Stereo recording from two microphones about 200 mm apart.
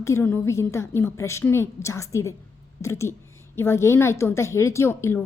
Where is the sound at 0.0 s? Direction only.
15° left (ahead or behind).